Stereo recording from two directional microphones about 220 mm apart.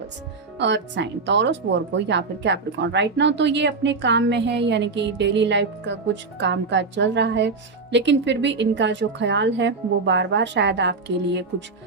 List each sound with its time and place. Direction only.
0.6 s speech: 55° right (ahead or behind)